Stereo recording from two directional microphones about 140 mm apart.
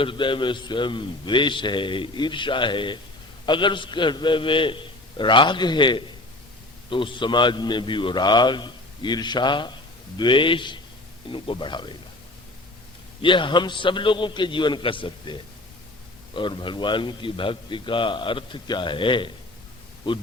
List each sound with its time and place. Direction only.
0.0 s a man's voice: 35° left (ahead or behind)
13.2 s a man's voice: 35° left (ahead or behind)